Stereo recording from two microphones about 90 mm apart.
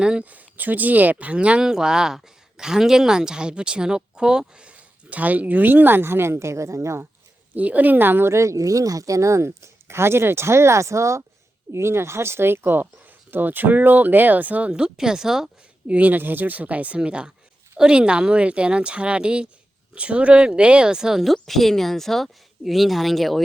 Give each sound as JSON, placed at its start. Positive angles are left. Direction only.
{"t": 0.0, "sound": "speech", "side_deg": -10}
{"t": 7.5, "sound": "speech", "side_deg": -20}
{"t": 15.9, "sound": "a woman's voice", "side_deg": -20}